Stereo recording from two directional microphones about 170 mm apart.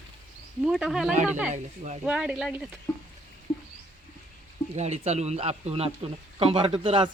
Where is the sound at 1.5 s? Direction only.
45° right (ahead or behind).